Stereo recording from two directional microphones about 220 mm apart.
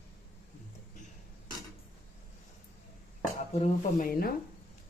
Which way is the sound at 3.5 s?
35° left (ahead or behind).